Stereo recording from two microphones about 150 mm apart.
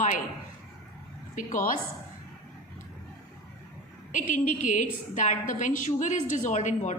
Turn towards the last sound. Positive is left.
turn(degrees=55)  # may be behind; listen again after turning